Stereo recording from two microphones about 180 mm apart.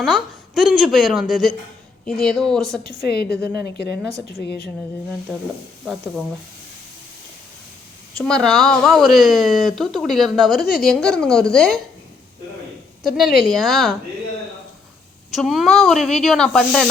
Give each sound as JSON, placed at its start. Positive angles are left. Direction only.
{"t": 0.0, "sound": "speech", "side_deg": 0}
{"t": 3.1, "sound": "speech", "side_deg": 60}
{"t": 3.3, "sound": "a woman's voice", "side_deg": -20}
{"t": 4.4, "sound": "speech", "side_deg": 65}
{"t": 5.8, "sound": "speech", "side_deg": 0}
{"t": 8.2, "sound": "speech", "side_deg": 5}
{"t": 13.0, "sound": "speech", "side_deg": 0}
{"t": 15.3, "sound": "speech", "side_deg": 0}